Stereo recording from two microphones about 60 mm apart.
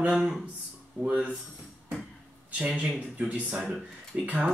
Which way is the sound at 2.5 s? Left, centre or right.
Right.